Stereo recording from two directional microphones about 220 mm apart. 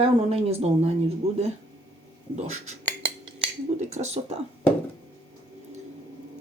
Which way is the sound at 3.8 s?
30° right (ahead or behind).